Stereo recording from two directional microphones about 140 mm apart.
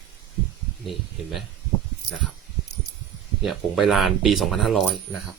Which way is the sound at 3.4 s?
Centre (ahead or behind).